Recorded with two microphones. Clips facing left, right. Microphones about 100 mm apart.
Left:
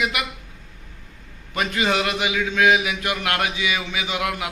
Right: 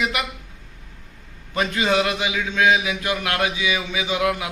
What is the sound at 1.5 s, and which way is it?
A man's voice, 25° right (ahead or behind).